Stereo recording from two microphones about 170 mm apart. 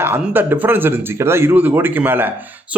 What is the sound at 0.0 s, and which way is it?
A man's voice, 10° right (ahead or behind).